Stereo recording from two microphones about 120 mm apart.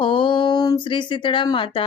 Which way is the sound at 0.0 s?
45° left (ahead or behind).